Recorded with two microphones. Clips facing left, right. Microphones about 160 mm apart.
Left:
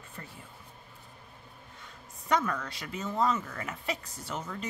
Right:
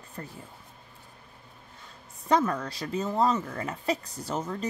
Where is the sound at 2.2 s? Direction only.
35° right (ahead or behind).